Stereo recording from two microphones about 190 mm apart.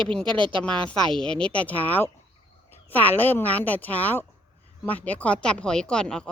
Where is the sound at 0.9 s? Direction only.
5° left (ahead or behind).